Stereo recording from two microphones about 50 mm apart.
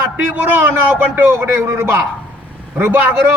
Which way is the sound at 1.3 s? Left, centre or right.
Right.